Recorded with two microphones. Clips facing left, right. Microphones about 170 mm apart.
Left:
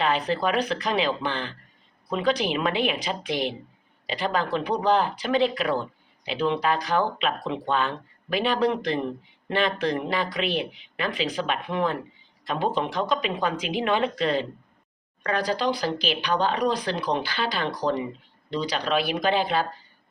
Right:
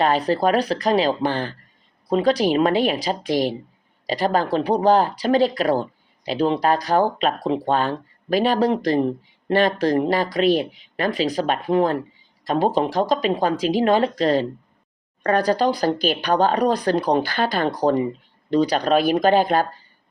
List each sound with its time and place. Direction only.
0.0 s speech: 40° right (ahead or behind)